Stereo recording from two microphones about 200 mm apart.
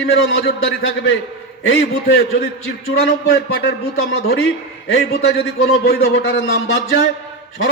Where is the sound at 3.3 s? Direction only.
65° left (ahead or behind).